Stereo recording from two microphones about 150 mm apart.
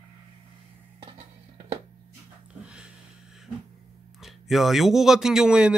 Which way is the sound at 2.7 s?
5° right (ahead or behind).